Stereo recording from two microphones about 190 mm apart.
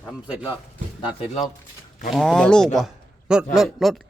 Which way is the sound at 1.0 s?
30° left (ahead or behind).